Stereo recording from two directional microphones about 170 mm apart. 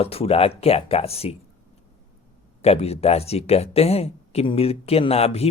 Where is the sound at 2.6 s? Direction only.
35° left (ahead or behind).